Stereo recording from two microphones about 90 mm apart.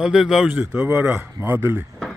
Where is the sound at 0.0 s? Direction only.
5° right (ahead or behind); by 1.9 s 25° right (ahead or behind).